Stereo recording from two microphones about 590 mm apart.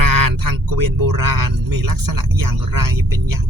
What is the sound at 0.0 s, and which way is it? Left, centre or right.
Speech, right.